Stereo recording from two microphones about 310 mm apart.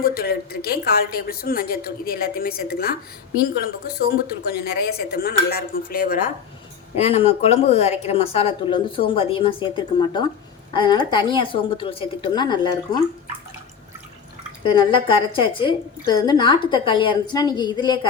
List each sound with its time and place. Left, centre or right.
0.0 s a woman's voice: left; by 12.5 s centre
14.6 s a woman's voice: centre